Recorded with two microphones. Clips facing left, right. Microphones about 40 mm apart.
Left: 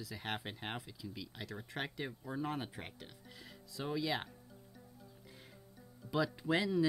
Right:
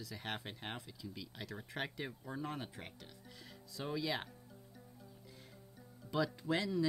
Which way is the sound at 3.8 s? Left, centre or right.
Centre.